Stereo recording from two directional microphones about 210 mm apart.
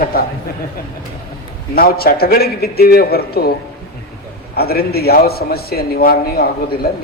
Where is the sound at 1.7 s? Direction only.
45° left (ahead or behind).